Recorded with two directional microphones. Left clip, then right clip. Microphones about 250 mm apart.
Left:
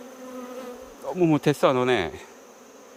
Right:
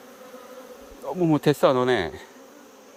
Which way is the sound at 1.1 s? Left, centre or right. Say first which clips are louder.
Even; centre.